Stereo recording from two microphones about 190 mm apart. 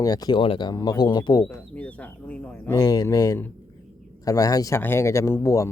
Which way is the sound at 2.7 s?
20° left (ahead or behind).